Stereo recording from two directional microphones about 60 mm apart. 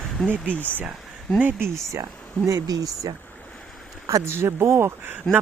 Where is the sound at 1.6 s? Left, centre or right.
Right.